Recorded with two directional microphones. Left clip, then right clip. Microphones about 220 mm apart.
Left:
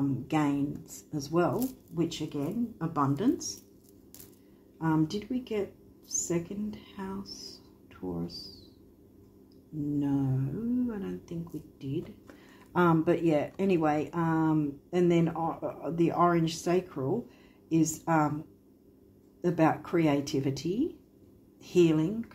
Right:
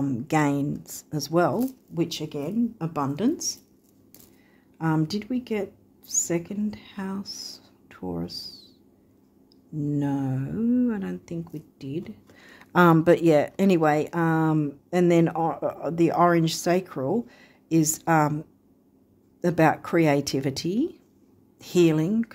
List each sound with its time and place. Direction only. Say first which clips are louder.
0.3 s speech: right 7 dB; 50° right (ahead or behind)
4.7 s speech: right 3 dB; 50° right (ahead or behind)
9.9 s speech: right 2 dB; 50° right (ahead or behind)
19.4 s speech: right 5 dB; 50° right (ahead or behind)